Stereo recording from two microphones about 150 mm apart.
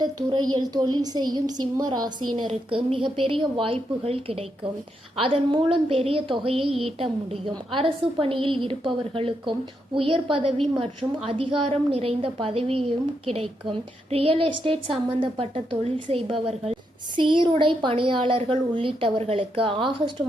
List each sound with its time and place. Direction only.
0.0 s a woman's voice: 25° right (ahead or behind)